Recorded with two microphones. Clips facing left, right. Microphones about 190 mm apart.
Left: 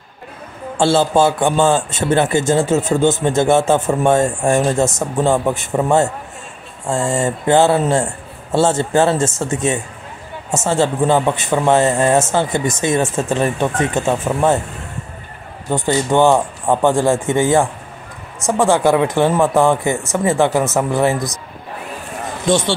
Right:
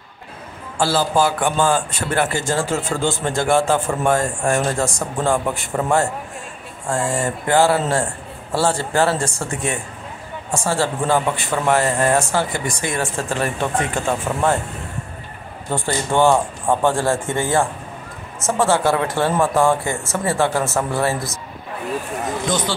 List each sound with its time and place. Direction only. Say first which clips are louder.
0.7 s speech: left 4 dB; 25° left (ahead or behind)
15.7 s speech: left 5 dB; 20° left (ahead or behind)
22.5 s speech: left 9 dB; 25° left (ahead or behind)